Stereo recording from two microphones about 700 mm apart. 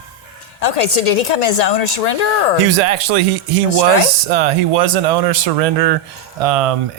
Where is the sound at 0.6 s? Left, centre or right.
Left.